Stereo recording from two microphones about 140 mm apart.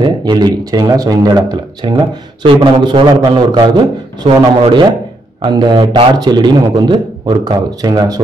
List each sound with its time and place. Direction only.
0.0 s a man's voice: 30° right (ahead or behind)